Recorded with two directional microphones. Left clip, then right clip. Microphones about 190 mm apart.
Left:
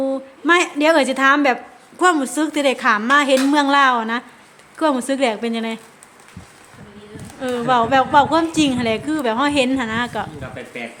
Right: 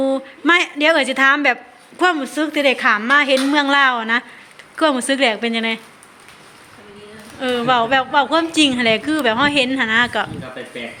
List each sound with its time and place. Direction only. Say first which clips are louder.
0.0 s speech: right 3 dB; centre (ahead or behind)
2.0 s a woman's voice: left 1 dB; 15° left (ahead or behind)
7.3 s a woman's voice: right 1 dB; 5° left (ahead or behind)